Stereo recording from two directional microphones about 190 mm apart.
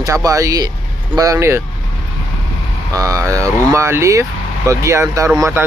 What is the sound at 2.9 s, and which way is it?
Speech, 15° right (ahead or behind).